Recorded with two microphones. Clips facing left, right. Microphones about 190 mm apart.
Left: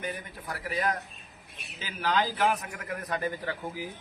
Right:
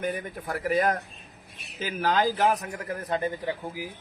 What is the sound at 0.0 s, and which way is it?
A man's voice, 50° right (ahead or behind).